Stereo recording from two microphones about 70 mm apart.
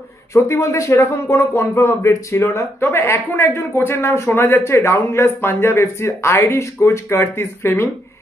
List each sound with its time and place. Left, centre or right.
0.3 s speech: left